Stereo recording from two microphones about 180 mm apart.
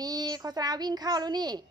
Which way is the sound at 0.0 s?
20° right (ahead or behind).